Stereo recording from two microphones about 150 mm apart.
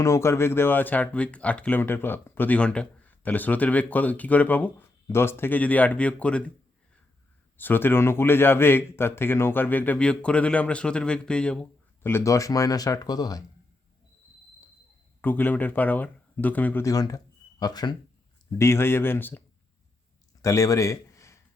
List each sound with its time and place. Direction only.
0.0 s speech: 20° left (ahead or behind)
7.5 s speech: 15° left (ahead or behind)
15.2 s speech: 10° left (ahead or behind)
16.8 s speech: 25° left (ahead or behind)
20.4 s speech: 20° left (ahead or behind)